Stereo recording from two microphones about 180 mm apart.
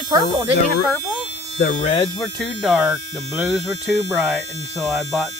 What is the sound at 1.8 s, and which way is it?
Speech, 30° left (ahead or behind).